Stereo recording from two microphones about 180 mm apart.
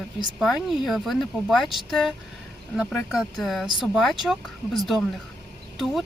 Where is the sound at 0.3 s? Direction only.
Centre (ahead or behind).